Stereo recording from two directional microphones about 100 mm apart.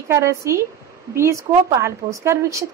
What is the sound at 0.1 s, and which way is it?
Speech, 30° right (ahead or behind).